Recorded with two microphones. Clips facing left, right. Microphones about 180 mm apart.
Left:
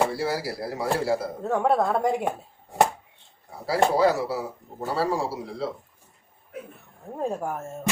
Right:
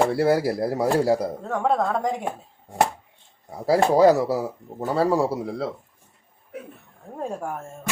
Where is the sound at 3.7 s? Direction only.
40° right (ahead or behind).